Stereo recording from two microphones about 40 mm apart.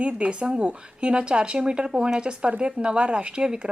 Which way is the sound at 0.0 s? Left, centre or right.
Right.